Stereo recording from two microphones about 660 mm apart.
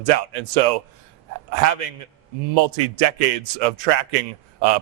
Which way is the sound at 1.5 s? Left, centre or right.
Right.